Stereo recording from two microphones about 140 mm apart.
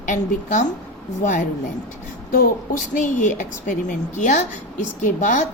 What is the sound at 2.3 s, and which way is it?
A woman's voice, 70° left (ahead or behind).